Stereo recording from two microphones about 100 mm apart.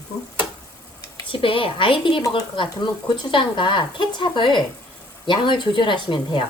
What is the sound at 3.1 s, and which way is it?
Speech, 50° left (ahead or behind).